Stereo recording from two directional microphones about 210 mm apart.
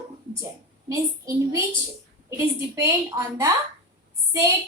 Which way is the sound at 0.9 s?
15° right (ahead or behind).